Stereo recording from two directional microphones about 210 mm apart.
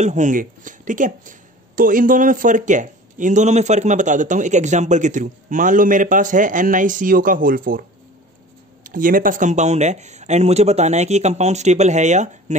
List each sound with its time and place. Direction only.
0.0 s speech: 35° right (ahead or behind)
8.8 s speech: 40° right (ahead or behind)